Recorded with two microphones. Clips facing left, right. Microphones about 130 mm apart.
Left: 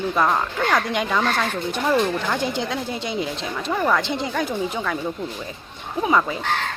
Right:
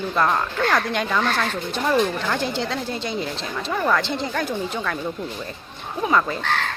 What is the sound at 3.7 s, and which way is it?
A woman's voice, 5° left (ahead or behind).